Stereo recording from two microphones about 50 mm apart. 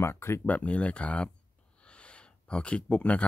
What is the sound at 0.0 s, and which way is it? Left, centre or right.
Speech, left.